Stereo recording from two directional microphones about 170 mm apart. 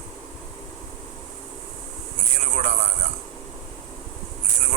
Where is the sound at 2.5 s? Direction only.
40° right (ahead or behind).